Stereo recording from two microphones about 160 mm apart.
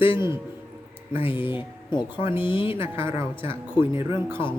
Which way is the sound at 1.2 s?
35° left (ahead or behind).